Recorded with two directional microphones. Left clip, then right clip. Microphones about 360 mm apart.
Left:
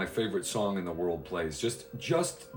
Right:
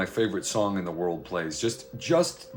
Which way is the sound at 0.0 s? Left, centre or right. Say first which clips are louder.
Right 4 dB; right.